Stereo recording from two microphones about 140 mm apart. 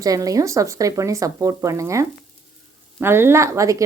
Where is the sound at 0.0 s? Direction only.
25° right (ahead or behind).